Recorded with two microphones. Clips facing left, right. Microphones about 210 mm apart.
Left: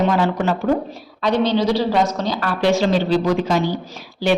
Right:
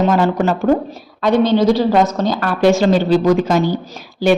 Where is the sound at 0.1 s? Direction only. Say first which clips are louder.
Right 4 dB; 45° right (ahead or behind).